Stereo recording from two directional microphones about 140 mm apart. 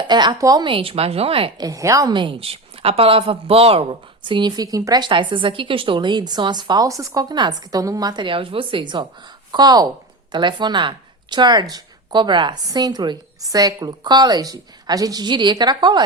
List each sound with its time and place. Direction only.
0.0 s a woman's voice: 30° right (ahead or behind)
0.7 s a woman's voice: 40° right (ahead or behind)
1.6 s a woman's voice: 20° right (ahead or behind)